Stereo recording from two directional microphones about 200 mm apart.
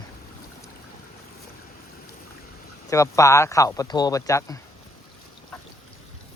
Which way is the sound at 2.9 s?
15° left (ahead or behind).